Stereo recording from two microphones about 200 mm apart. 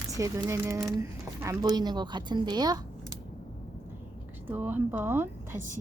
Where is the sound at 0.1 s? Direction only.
15° right (ahead or behind).